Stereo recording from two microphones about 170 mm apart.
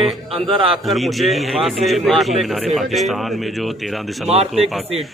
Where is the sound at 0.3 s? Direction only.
30° right (ahead or behind).